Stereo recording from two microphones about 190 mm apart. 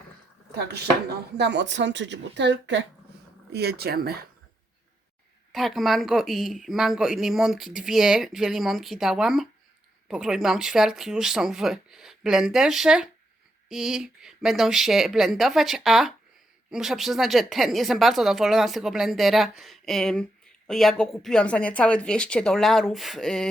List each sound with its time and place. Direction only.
0.5 s speech: 60° right (ahead or behind)
3.5 s speech: 60° right (ahead or behind)
5.5 s speech: centre (ahead or behind)